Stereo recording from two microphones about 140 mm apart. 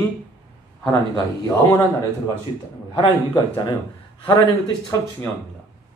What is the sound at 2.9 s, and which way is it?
Speech, 35° left (ahead or behind).